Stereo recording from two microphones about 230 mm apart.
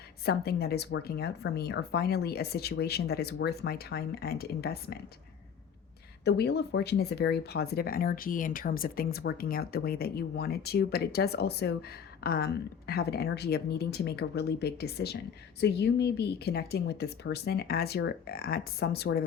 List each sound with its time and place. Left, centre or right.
0.3 s speech: left
6.2 s speech: left